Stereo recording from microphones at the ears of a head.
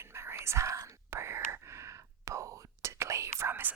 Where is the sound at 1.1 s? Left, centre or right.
Right.